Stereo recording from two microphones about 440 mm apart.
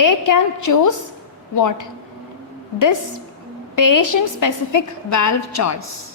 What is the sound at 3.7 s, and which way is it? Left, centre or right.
A woman's voice, left.